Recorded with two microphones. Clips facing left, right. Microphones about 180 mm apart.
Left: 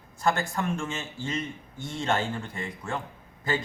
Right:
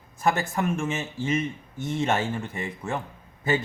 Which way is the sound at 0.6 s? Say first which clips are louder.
Right 4 dB; 20° right (ahead or behind).